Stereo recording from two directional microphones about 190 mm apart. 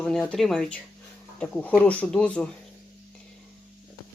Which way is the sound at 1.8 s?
10° left (ahead or behind).